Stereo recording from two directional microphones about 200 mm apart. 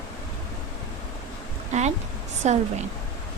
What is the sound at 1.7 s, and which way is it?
Speech, 35° right (ahead or behind).